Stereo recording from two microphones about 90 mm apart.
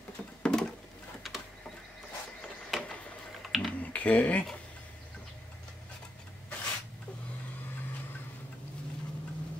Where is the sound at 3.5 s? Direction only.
Centre (ahead or behind).